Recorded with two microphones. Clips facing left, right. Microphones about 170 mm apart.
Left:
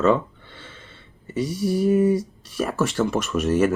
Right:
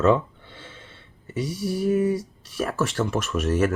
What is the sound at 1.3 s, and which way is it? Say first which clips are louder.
Speech: left 4 dB; 5° right (ahead or behind).